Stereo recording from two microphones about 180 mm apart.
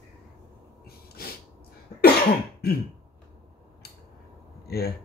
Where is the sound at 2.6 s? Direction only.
60° left (ahead or behind).